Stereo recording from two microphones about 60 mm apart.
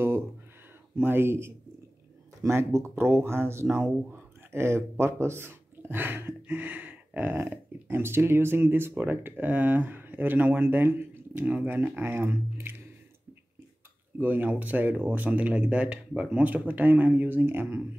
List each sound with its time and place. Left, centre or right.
0.9 s speech: right
6.4 s speech: right
14.1 s speech: right